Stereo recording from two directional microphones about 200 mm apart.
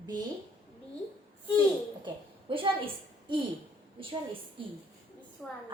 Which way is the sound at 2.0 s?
25° right (ahead or behind).